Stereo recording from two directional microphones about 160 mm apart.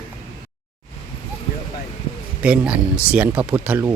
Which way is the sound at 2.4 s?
5° right (ahead or behind).